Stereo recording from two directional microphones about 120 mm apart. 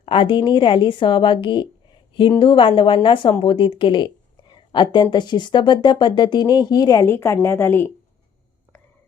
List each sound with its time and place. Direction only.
0.0 s a woman's voice: 45° left (ahead or behind); by 7.9 s 20° left (ahead or behind)